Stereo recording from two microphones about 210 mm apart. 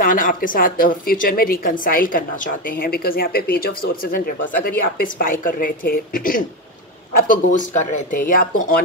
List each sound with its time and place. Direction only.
0.0 s a woman's voice: 40° left (ahead or behind)